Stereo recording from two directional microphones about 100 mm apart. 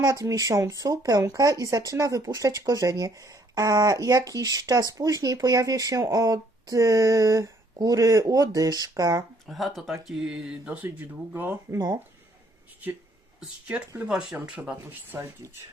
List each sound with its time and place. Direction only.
0.0 s speech: 35° right (ahead or behind)
9.5 s speech: centre (ahead or behind); by 11.5 s 20° right (ahead or behind)
13.4 s speech: 10° right (ahead or behind)
15.1 s speech: 30° right (ahead or behind)